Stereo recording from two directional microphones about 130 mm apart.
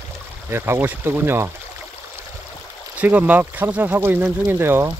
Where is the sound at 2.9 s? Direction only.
10° right (ahead or behind).